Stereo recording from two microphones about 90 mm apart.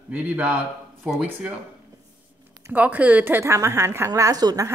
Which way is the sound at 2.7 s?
15° right (ahead or behind).